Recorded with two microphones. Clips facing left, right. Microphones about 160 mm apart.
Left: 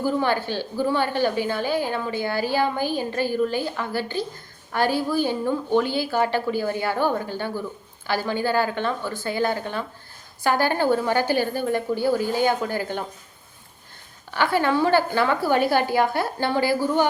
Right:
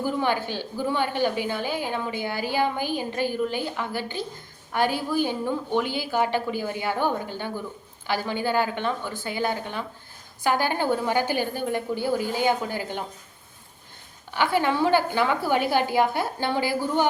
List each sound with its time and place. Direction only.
0.0 s a woman's voice: 15° right (ahead or behind)
14.3 s a woman's voice: 15° right (ahead or behind)